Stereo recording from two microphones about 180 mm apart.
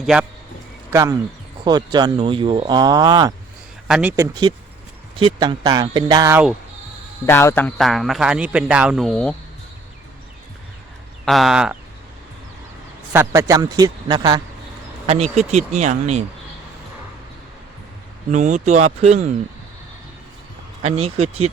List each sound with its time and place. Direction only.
0.0 s speech: 5° right (ahead or behind)
1.6 s speech: 25° right (ahead or behind)
3.8 s speech: 5° right (ahead or behind)
4.2 s speech: 20° right (ahead or behind)
7.3 s speech: 15° left (ahead or behind)
11.3 s speech: centre (ahead or behind)
13.1 s speech: 20° right (ahead or behind)
15.0 s speech: 35° right (ahead or behind)
18.3 s speech: 40° right (ahead or behind)
20.8 s speech: 35° right (ahead or behind)